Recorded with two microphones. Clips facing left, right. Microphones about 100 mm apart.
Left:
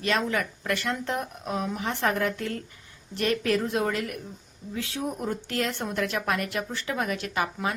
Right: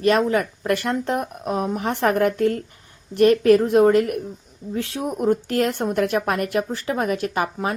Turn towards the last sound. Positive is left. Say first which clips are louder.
# right 5 dB
turn(degrees=-35)  # may be behind; listen again after turning